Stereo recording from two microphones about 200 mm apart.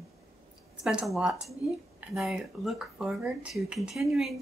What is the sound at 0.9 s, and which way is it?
Speech, centre (ahead or behind).